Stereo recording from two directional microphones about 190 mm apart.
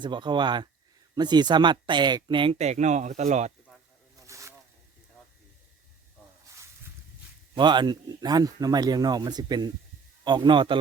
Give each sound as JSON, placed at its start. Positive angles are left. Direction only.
{"t": 0.0, "sound": "speech", "side_deg": -25}
{"t": 4.3, "sound": "snake", "side_deg": -15}
{"t": 7.5, "sound": "speech", "side_deg": -25}